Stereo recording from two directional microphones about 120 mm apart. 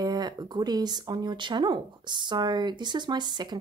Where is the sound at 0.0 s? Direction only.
35° right (ahead or behind).